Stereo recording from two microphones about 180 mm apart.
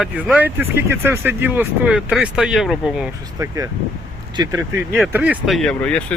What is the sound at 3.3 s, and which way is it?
Speech, 20° right (ahead or behind).